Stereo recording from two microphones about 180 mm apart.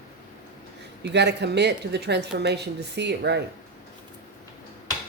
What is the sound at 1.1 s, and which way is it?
A woman's voice, 70° right (ahead or behind).